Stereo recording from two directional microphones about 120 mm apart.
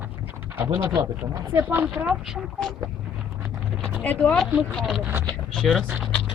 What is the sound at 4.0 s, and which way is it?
Speech, 15° left (ahead or behind).